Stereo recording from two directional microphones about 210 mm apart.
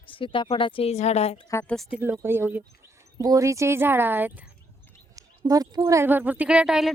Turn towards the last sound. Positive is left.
turn(degrees=-5)  # may be behind; listen again after turning